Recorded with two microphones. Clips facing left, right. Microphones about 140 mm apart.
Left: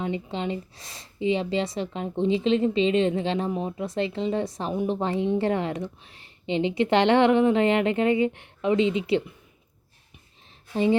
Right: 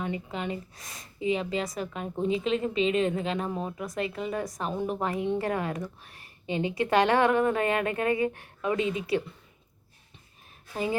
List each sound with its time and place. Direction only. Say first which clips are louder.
0.0 s a woman's voice: left 4 dB; 25° left (ahead or behind)